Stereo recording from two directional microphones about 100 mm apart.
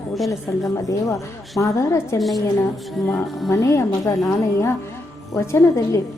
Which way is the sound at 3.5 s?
30° left (ahead or behind).